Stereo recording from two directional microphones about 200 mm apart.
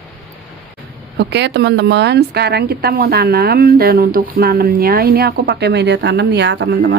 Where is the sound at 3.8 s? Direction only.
50° right (ahead or behind).